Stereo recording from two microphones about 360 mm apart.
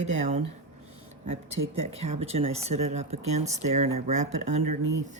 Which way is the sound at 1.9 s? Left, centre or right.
Centre.